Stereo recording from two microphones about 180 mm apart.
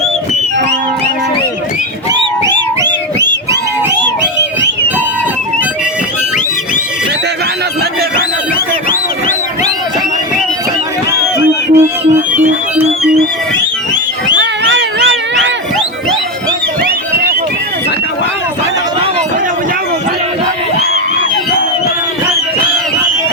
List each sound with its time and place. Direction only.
8.9 s music: 45° left (ahead or behind)
11.1 s music: 15° right (ahead or behind)
14.7 s cat: 80° right